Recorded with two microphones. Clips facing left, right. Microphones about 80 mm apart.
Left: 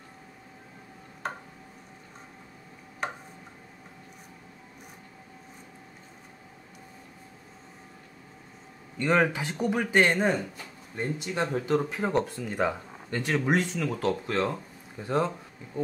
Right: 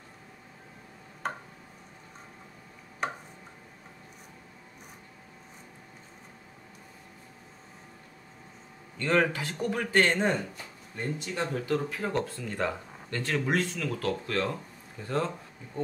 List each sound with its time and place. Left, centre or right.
8.9 s a man's voice: centre
10.1 s speech: centre
11.0 s speech: centre